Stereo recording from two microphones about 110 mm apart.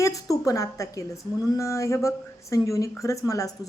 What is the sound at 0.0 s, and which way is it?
A woman's voice, 30° left (ahead or behind).